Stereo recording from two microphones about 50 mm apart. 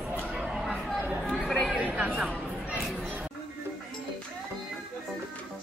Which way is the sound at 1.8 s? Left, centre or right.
Right.